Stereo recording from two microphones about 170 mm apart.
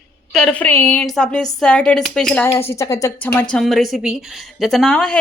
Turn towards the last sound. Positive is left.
turn(degrees=5)  # may be behind; listen again after turning